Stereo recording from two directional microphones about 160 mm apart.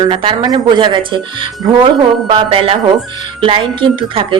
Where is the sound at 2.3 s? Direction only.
35° right (ahead or behind).